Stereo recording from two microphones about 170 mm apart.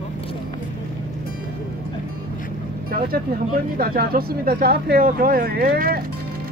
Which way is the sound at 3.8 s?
60° right (ahead or behind).